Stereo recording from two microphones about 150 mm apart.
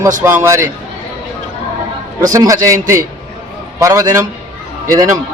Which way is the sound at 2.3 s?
25° right (ahead or behind).